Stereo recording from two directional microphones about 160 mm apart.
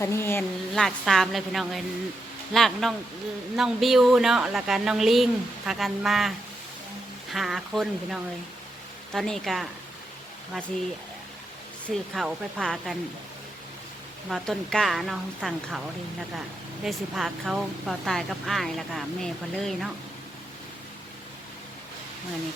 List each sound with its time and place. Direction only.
0.0 s speech: 15° left (ahead or behind)
0.7 s speech: centre (ahead or behind)
7.3 s speech: centre (ahead or behind)
11.9 s speech: centre (ahead or behind)
14.3 s speech: centre (ahead or behind)
16.8 s speech: centre (ahead or behind)